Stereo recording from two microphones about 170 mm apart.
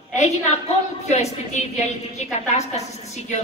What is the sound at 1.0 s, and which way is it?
A woman's voice, 40° left (ahead or behind).